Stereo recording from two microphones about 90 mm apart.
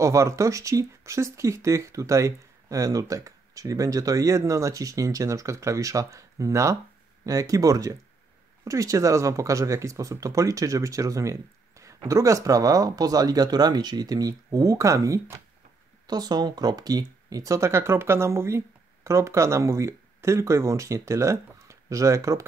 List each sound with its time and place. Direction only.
0.0 s speech: 35° right (ahead or behind)
16.1 s speech: 50° right (ahead or behind); by 22.4 s 35° right (ahead or behind)